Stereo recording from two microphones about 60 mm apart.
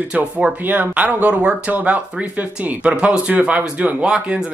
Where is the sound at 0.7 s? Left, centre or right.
Right.